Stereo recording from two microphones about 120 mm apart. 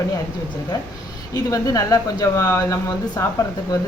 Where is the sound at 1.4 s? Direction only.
30° left (ahead or behind).